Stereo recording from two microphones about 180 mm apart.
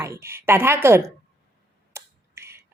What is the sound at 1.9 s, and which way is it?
Finger snapping, 15° right (ahead or behind).